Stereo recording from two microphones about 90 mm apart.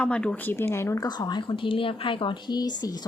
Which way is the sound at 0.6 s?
30° left (ahead or behind).